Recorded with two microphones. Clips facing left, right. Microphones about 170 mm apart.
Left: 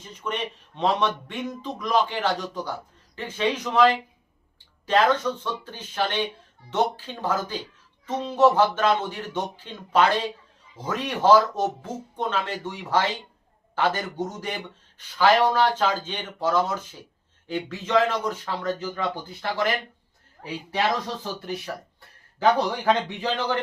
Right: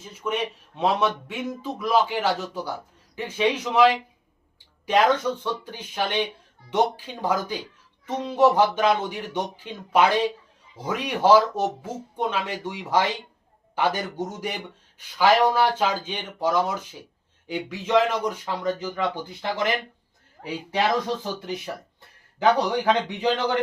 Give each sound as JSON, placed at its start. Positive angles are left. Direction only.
{"t": 0.0, "sound": "a man's voice", "side_deg": -5}
{"t": 22.9, "sound": "a man's voice", "side_deg": -15}